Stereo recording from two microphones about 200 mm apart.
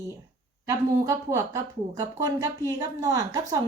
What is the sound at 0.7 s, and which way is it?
A woman's voice, 15° right (ahead or behind).